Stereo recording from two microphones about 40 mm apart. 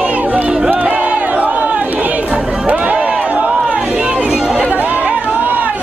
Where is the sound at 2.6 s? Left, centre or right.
Right.